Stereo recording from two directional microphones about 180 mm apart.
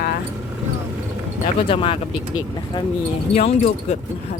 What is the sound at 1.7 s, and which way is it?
Speech, 30° left (ahead or behind).